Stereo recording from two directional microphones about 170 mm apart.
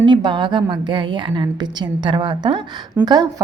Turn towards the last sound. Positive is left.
turn(degrees=-25)  # may be behind; listen again after turning